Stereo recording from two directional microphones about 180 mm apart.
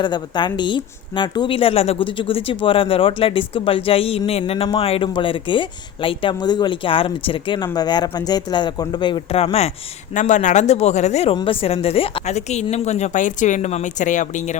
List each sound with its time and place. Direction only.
0.0 s a woman's voice: 25° left (ahead or behind); by 14.5 s 45° left (ahead or behind)